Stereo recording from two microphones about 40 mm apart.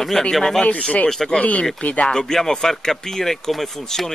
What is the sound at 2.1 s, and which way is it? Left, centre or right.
Speech, centre.